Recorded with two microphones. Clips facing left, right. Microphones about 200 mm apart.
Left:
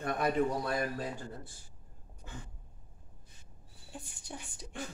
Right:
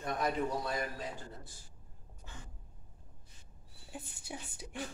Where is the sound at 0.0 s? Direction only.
60° left (ahead or behind).